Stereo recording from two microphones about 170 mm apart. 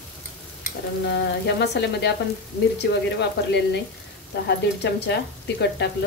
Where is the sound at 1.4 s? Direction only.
85° left.